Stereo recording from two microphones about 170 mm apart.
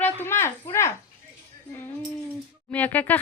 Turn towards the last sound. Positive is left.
turn(degrees=10)  # may be behind; listen again after turning